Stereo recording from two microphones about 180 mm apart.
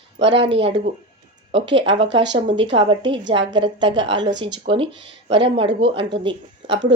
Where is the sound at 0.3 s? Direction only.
80° right.